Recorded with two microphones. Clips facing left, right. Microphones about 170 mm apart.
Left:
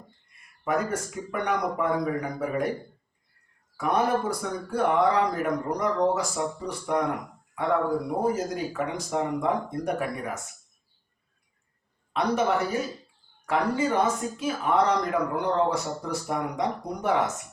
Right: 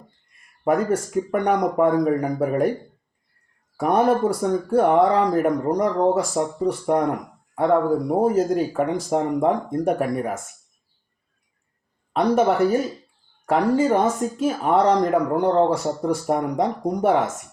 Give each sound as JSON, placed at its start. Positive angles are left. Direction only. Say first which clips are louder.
{"t": 0.6, "sound": "speech", "louder": "right 7 dB", "side_deg": -50}
{"t": 3.8, "sound": "speech", "louder": "right 6 dB", "side_deg": -50}
{"t": 7.5, "sound": "speech", "louder": "right 6 dB", "side_deg": -45}
{"t": 12.1, "sound": "speech", "louder": "right 6 dB", "side_deg": -50}